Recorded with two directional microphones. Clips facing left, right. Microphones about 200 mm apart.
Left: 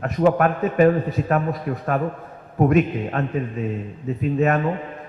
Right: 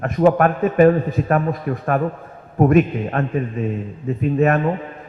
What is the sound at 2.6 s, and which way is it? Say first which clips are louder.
Speech: right 3 dB; 50° right (ahead or behind).